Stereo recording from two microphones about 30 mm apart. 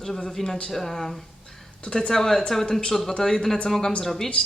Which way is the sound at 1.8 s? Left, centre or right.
Left.